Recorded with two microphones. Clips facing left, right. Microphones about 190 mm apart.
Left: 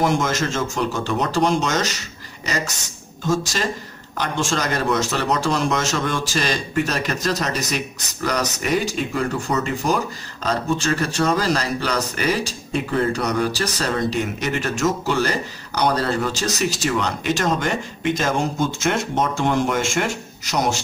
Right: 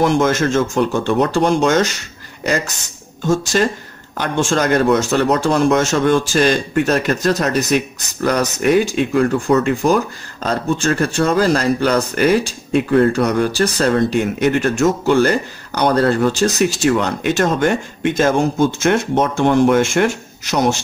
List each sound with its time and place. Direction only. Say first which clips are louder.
0.2 s speech: right 7 dB; 55° right (ahead or behind)
3.5 s speech: right 8 dB; 50° right (ahead or behind)